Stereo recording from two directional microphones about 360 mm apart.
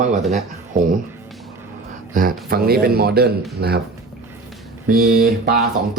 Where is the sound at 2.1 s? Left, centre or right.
Right.